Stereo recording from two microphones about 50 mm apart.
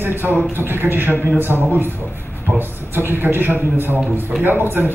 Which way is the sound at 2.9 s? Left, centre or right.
Right.